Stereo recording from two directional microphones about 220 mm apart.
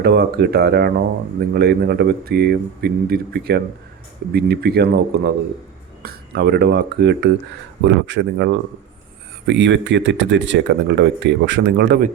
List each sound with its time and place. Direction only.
0.0 s speech: 45° right (ahead or behind)